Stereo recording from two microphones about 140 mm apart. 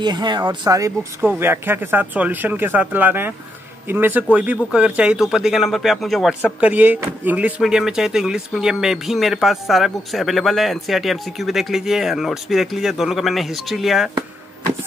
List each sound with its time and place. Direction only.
0.0 s speech: 30° right (ahead or behind); by 6.3 s centre (ahead or behind)
6.6 s speech: 10° right (ahead or behind)